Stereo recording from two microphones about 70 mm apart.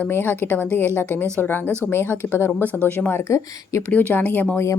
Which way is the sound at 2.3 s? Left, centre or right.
Left.